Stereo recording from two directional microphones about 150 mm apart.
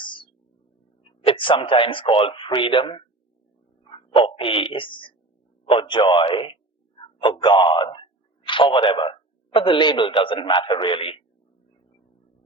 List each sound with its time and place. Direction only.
1.2 s a man's voice: 35° left (ahead or behind)